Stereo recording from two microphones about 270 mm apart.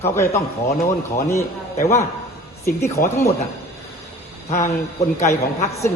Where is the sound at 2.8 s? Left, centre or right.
Centre.